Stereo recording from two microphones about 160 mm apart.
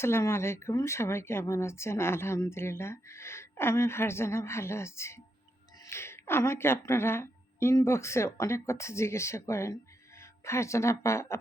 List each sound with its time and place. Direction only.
0.0 s speech: 15° left (ahead or behind)